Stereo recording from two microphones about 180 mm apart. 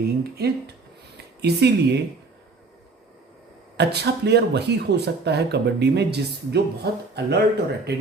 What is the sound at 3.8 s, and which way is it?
Speech, 70° right (ahead or behind).